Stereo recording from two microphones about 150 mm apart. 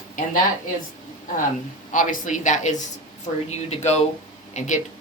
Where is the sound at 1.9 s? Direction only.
60° left (ahead or behind).